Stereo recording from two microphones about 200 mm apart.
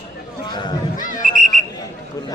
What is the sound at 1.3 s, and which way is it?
Whistle, 40° right (ahead or behind).